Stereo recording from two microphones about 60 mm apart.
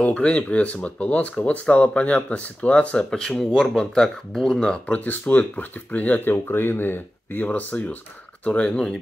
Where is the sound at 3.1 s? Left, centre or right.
Centre.